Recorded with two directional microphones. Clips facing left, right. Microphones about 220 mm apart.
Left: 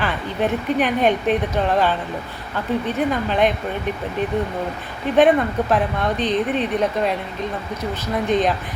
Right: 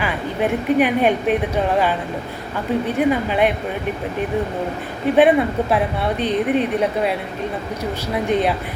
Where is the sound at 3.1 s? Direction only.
10° right (ahead or behind).